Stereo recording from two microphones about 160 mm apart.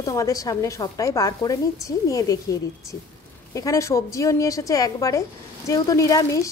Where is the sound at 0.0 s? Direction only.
20° left (ahead or behind).